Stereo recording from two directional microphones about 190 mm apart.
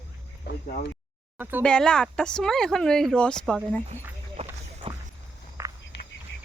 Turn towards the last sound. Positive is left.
turn(degrees=-15)  # may be behind; listen again after turning